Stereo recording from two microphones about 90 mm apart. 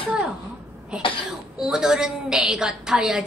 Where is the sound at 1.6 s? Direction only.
5° right (ahead or behind).